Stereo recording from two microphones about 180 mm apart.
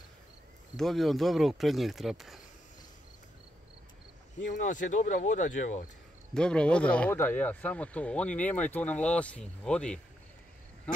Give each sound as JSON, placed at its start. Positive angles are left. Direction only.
{"t": 0.7, "sound": "speech", "side_deg": 0}
{"t": 4.5, "sound": "speech", "side_deg": 45}
{"t": 6.3, "sound": "speech", "side_deg": 5}